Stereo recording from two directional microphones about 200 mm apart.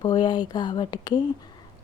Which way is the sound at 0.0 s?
20° left (ahead or behind).